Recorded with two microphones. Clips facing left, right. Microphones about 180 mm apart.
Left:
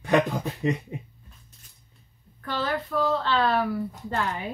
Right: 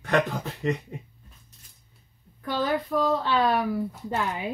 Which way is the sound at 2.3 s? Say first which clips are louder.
Right 2 dB; 15° right (ahead or behind).